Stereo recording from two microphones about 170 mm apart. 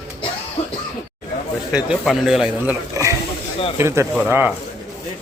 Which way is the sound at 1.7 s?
5° right (ahead or behind).